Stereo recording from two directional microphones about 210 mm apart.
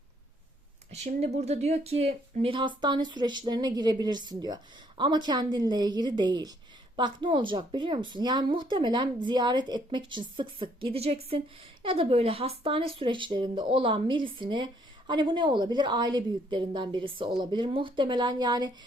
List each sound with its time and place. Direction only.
0.9 s speech: 30° right (ahead or behind)